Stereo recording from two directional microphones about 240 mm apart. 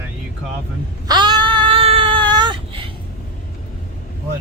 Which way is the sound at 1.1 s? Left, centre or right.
Centre.